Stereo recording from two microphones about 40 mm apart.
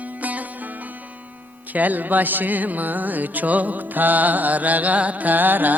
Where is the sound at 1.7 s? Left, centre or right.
Right.